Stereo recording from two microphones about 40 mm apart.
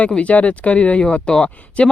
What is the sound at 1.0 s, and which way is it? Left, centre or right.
Speech, left.